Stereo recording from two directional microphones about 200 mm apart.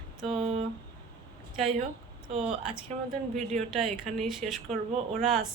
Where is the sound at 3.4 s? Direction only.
Centre (ahead or behind).